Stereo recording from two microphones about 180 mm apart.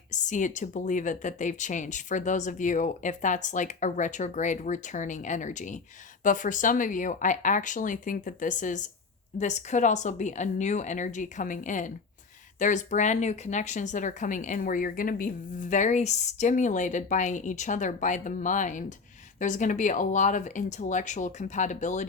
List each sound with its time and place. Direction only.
0.1 s a woman's voice: 45° left (ahead or behind)